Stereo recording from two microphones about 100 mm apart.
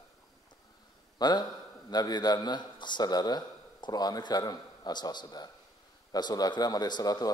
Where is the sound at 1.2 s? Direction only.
45° left (ahead or behind).